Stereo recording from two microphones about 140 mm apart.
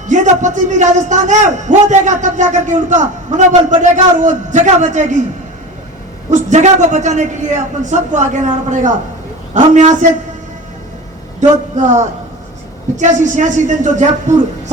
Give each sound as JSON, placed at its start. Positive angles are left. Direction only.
{"t": 0.1, "sound": "a man's voice", "side_deg": -60}
{"t": 6.3, "sound": "a man's voice", "side_deg": -60}
{"t": 11.3, "sound": "a man's voice", "side_deg": -60}